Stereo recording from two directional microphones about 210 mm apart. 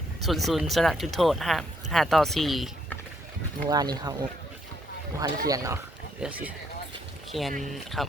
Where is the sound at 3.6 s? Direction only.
20° right (ahead or behind).